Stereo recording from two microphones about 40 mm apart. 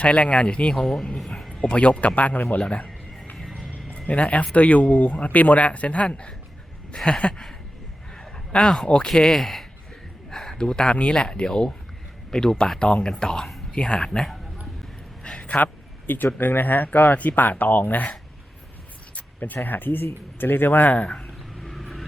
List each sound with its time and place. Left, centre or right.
0.0 s speech: left
0.8 s speech: centre
1.5 s speech: left
2.6 s speech: left
3.9 s speech: left; by 14.3 s centre
15.2 s a sound: left
15.4 s speech: left
19.4 s speech: left
20.9 s speech: left
21.6 s vehicle: centre